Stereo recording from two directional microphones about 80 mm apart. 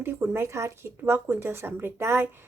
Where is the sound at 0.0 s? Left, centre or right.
Right.